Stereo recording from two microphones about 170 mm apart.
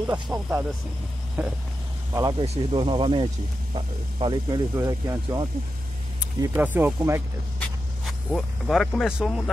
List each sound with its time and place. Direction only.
0.0 s speech: 10° right (ahead or behind)
2.4 s speech: 35° right (ahead or behind)
4.7 s speech: 15° right (ahead or behind)
8.3 s speech: centre (ahead or behind)